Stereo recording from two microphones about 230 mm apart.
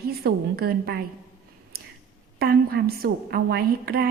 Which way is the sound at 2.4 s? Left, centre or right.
Right.